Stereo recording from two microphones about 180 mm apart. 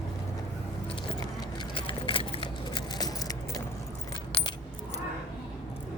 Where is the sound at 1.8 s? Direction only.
30° left (ahead or behind).